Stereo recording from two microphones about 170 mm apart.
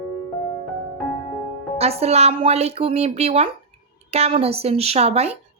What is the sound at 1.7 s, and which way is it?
Speech, 35° right (ahead or behind).